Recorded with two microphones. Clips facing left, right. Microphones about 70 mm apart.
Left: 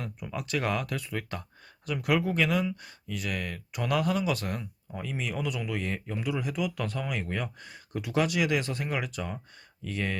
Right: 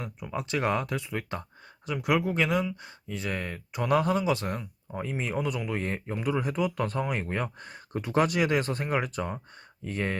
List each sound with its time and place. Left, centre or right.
0.0 s speech: right